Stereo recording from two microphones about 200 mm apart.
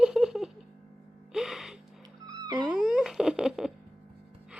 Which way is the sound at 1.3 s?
Centre (ahead or behind).